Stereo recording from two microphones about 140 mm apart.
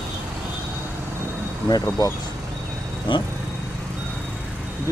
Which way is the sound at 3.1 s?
35° left (ahead or behind).